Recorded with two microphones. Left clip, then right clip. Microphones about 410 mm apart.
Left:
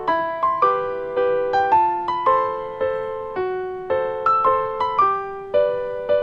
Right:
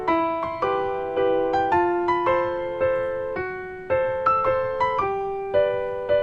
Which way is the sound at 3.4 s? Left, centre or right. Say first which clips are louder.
Left 6 dB; left.